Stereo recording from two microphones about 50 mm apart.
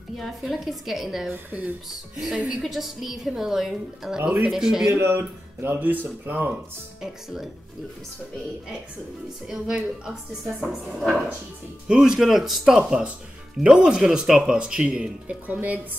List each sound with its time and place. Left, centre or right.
0.2 s a woman's voice: centre
2.3 s speech: centre
2.6 s a woman's voice: centre
4.9 s speech: right
7.0 s speech: centre
9.5 s speech: centre
11.0 s a woman's voice: centre; by 15.3 s right
15.4 s speech: right